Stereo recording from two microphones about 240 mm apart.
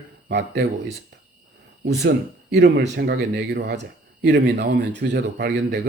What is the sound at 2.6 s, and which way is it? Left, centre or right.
Speech, right.